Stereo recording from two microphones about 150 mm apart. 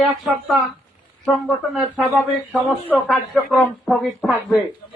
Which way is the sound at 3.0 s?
Centre (ahead or behind).